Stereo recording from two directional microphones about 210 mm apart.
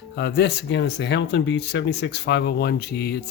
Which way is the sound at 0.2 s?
55° left (ahead or behind).